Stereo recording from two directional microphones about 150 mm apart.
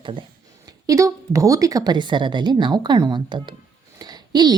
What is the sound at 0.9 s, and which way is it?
A woman's voice, 20° right (ahead or behind).